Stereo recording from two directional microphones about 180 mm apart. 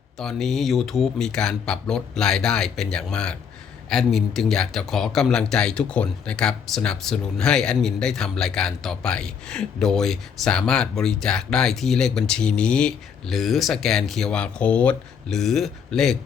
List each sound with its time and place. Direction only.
0.2 s speech: centre (ahead or behind)